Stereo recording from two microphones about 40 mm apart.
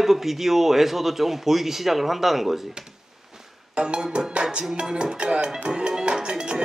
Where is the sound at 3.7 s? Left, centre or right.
Right.